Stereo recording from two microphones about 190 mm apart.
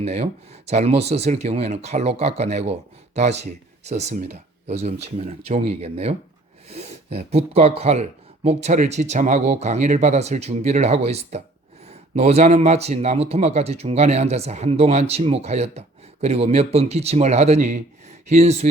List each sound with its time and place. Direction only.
0.0 s speech: 35° right (ahead or behind)
7.3 s speech: 35° right (ahead or behind)